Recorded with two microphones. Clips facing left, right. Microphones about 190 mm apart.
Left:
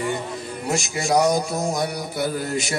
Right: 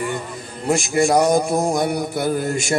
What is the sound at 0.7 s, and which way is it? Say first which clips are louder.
Mantra: right 6 dB; 55° right (ahead or behind).